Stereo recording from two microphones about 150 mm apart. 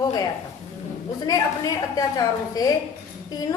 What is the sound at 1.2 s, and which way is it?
Speech, 25° left (ahead or behind).